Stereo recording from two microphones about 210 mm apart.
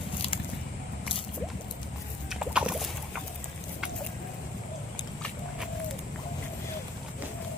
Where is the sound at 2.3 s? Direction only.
5° right (ahead or behind).